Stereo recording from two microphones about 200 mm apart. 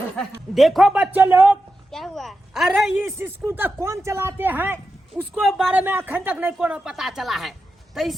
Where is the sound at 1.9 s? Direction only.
Centre (ahead or behind).